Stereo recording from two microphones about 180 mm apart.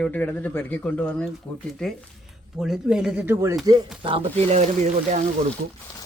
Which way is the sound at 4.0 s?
30° right (ahead or behind).